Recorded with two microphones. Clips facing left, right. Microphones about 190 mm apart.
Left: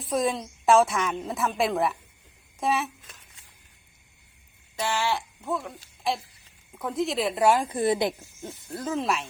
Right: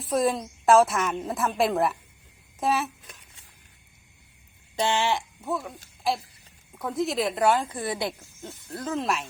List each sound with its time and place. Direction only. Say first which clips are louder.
0.0 s a woman's voice: right 2 dB; centre (ahead or behind)
4.8 s speech: right 2 dB; 25° right (ahead or behind)
5.5 s a woman's voice: even; centre (ahead or behind)
7.7 s speech: left 6 dB; 20° left (ahead or behind)
8.4 s a woman's voice: left 1 dB; 10° left (ahead or behind)